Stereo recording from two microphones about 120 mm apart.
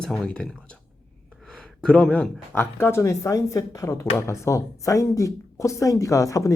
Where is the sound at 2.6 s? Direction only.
20° left (ahead or behind).